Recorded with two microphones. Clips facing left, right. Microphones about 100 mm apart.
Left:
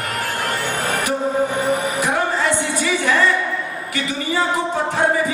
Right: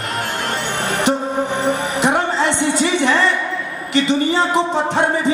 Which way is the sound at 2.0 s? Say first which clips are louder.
Right 5 dB; 25° right (ahead or behind).